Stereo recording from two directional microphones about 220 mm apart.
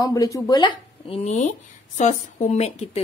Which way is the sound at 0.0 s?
15° left (ahead or behind).